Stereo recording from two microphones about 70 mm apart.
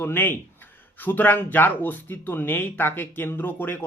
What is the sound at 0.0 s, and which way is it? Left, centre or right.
Speech, left.